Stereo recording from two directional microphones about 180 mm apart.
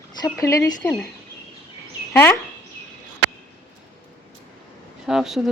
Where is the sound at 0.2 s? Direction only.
20° left (ahead or behind).